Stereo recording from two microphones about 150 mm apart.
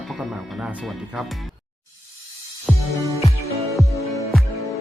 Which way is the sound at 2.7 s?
10° right (ahead or behind).